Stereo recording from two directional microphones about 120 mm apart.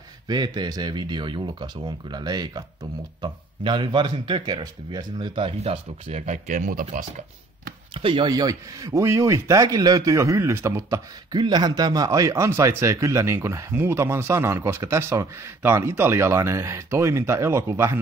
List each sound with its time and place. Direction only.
0.3 s speech: 40° right (ahead or behind); by 7.1 s 90° right
7.9 s speech: 45° right (ahead or behind)
8.3 s speech: 30° right (ahead or behind)
11.3 s speech: 35° right (ahead or behind)